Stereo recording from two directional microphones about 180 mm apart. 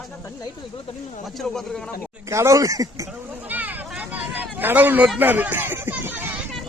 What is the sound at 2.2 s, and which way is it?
Speech, 15° right (ahead or behind).